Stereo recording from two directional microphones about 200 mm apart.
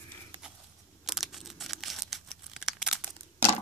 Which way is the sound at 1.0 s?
Centre (ahead or behind).